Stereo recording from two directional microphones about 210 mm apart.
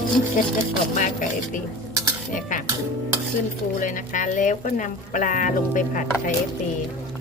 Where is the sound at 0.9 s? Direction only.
40° left (ahead or behind).